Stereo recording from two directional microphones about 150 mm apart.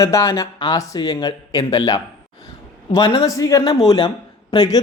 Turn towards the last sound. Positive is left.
turn(degrees=25)  # may be behind; listen again after turning